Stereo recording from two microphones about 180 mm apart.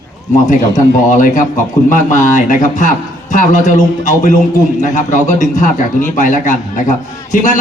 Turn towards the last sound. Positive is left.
turn(degrees=45)  # may be behind; listen again after turning